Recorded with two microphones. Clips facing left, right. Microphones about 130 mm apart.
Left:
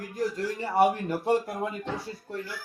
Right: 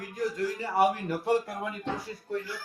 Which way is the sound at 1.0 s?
25° left (ahead or behind).